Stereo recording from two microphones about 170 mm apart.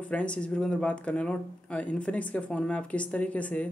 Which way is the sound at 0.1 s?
5° left (ahead or behind).